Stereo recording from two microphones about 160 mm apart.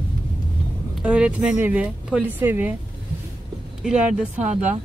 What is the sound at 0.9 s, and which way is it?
Speech, 5° right (ahead or behind).